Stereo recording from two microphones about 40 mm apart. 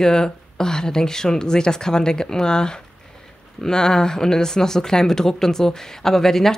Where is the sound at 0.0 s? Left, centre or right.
Centre.